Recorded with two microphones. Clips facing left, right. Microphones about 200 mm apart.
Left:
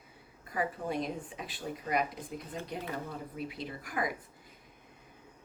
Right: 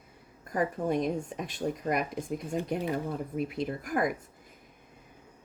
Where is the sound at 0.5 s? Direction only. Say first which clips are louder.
Right 5 dB; 45° right (ahead or behind).